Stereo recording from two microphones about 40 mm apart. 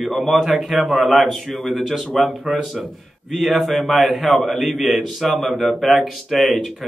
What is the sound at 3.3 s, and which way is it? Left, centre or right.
A man's voice, centre.